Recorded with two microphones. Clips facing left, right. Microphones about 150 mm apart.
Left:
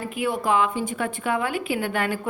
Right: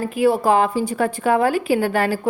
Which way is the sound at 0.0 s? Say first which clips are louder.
Right 8 dB; 35° right (ahead or behind).